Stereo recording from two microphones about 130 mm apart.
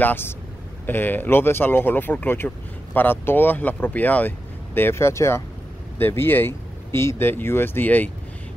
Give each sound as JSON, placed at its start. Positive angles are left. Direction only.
{"t": 0.0, "sound": "speech", "side_deg": 15}